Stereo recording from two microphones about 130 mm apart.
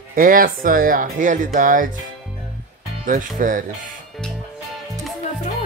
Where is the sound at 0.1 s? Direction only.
90° right.